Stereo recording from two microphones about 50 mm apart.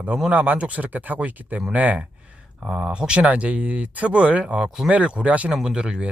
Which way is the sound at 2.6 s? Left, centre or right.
Centre.